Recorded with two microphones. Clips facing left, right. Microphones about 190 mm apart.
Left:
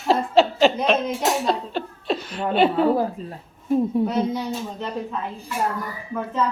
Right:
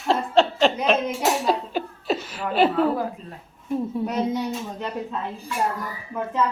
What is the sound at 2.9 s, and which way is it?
Speech, 30° left (ahead or behind).